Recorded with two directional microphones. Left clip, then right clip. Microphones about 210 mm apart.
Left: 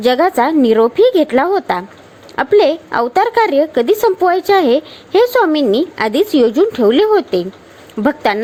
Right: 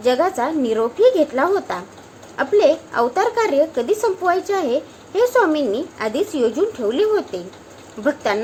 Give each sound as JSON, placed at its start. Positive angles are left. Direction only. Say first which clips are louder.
{"t": 0.0, "sound": "a woman's voice", "louder": "left 6 dB", "side_deg": 40}